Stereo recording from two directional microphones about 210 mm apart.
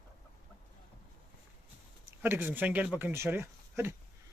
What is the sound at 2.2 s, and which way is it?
Speech, 10° right (ahead or behind).